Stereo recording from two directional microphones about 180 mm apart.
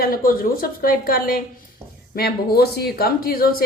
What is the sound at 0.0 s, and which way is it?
Speech, 55° left (ahead or behind).